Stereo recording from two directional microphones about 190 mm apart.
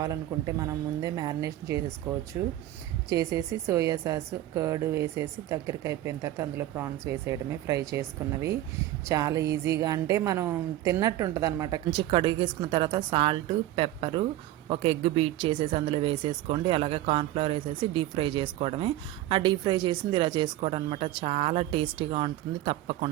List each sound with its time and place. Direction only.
0.0 s a woman's voice: 20° right (ahead or behind)